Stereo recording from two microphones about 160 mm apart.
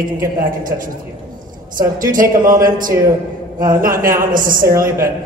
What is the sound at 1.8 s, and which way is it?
A man's voice, 60° right (ahead or behind).